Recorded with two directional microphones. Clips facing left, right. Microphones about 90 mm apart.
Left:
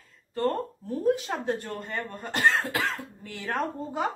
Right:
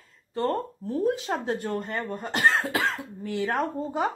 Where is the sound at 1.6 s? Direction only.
10° right (ahead or behind).